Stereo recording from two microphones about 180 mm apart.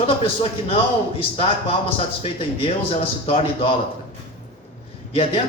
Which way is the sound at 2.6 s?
30° left (ahead or behind).